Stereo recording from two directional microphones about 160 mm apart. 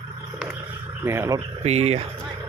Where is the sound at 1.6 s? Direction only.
40° right (ahead or behind).